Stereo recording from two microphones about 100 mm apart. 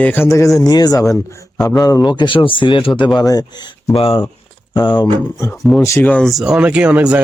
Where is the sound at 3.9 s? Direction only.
65° left (ahead or behind).